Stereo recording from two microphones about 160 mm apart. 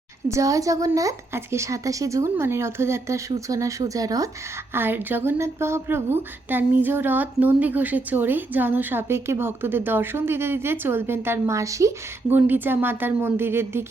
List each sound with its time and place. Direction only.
0.3 s speech: 20° right (ahead or behind)